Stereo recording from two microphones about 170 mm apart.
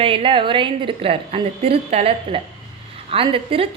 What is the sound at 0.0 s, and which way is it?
A woman's voice, 30° right (ahead or behind).